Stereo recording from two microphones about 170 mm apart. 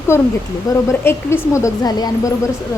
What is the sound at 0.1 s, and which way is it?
A woman's voice, 15° left (ahead or behind).